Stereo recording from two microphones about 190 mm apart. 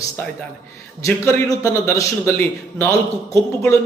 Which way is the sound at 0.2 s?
10° left (ahead or behind).